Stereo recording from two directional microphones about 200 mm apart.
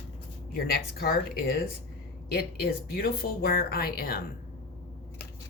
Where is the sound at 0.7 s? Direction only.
50° left (ahead or behind).